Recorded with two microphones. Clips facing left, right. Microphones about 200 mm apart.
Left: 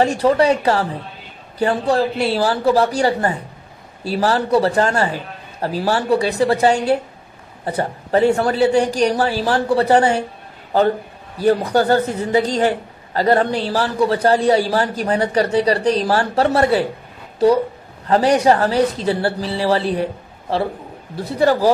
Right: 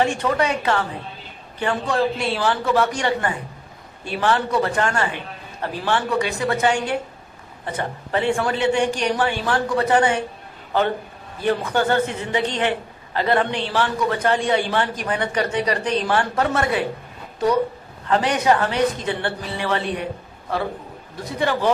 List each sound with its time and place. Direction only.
0.0 s speech: 35° left (ahead or behind)
11.3 s speech: 40° left (ahead or behind)